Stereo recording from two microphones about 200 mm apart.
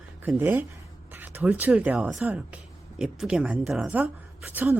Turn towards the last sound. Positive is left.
turn(degrees=-10)  # may be behind; listen again after turning